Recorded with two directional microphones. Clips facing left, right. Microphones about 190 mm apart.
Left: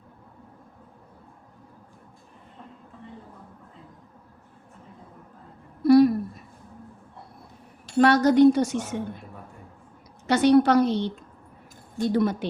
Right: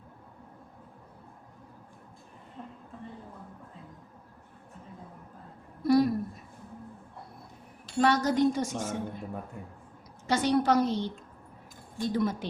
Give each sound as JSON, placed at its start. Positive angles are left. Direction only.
{"t": 5.8, "sound": "a sound", "side_deg": 70}
{"t": 7.9, "sound": "speech", "side_deg": 70}
{"t": 10.2, "sound": "speech", "side_deg": 65}